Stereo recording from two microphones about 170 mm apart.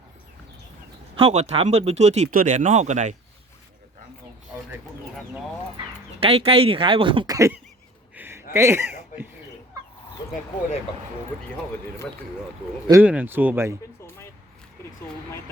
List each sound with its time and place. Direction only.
1.1 s speech: 35° right (ahead or behind)
2.3 s speech: 50° right (ahead or behind)
6.1 s speech: 35° right (ahead or behind)
7.3 s speech: 15° right (ahead or behind)
8.1 s a sound: 15° right (ahead or behind)
8.5 s speech: 15° right (ahead or behind)
12.9 s speech: 10° right (ahead or behind)